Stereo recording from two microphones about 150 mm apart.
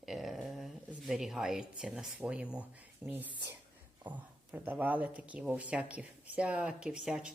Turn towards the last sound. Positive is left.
turn(degrees=-5)  # may be behind; listen again after turning